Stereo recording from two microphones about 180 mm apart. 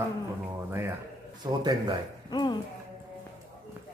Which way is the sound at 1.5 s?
20° right (ahead or behind).